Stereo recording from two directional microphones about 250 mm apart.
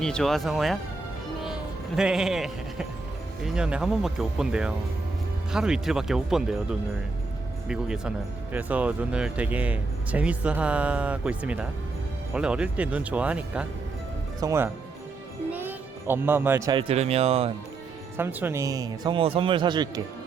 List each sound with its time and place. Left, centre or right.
0.0 s speech: centre
2.0 s speech: centre; by 17.5 s right
18.2 s speech: centre